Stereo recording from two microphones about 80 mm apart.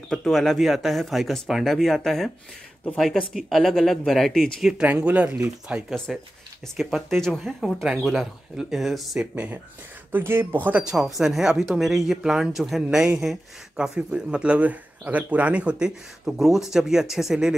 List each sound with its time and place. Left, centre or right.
0.1 s speech: centre
3.3 s speech: centre
4.8 s a man's voice: centre
6.1 s speech: centre
9.2 s a man's voice: centre
10.1 s speech: right
10.8 s a man's voice: centre